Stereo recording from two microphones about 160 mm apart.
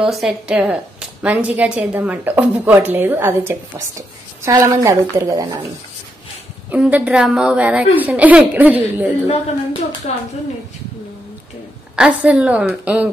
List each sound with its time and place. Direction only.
0.0 s a woman's voice: 5° right (ahead or behind); by 5.7 s 20° right (ahead or behind)
6.7 s a woman's voice: 10° right (ahead or behind)
10.1 s speech: 45° left (ahead or behind)
11.9 s a woman's voice: 10° right (ahead or behind)